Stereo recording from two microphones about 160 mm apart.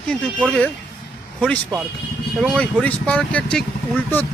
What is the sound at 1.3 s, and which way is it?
Speech, 5° left (ahead or behind).